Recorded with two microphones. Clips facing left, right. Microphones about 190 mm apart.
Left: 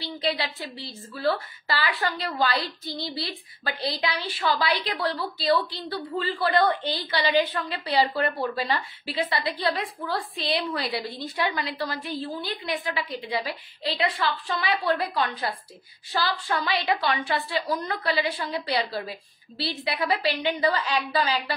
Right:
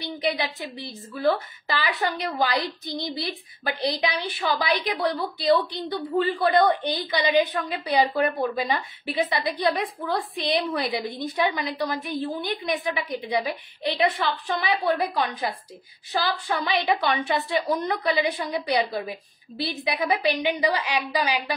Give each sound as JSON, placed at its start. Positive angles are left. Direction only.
{"t": 0.2, "sound": "a woman's voice", "side_deg": -15}